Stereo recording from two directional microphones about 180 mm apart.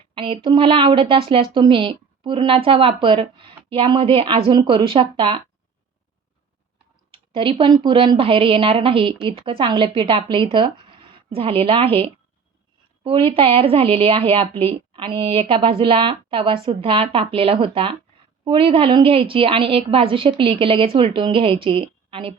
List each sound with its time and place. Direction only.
0.1 s a woman's voice: 30° right (ahead or behind)
7.1 s a woman's voice: 30° right (ahead or behind)